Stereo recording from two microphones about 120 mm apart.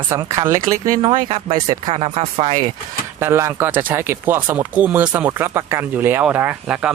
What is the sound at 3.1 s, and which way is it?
Speech, 20° right (ahead or behind).